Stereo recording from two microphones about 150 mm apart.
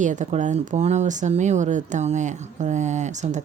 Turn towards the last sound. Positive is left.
turn(degrees=-55)  # may be behind; listen again after turning